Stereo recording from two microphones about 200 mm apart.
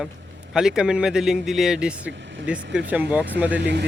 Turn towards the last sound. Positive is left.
turn(degrees=-60)  # may be behind; listen again after turning